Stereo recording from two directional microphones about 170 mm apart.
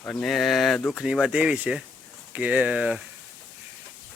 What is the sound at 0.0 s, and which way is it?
Speech, 5° left (ahead or behind).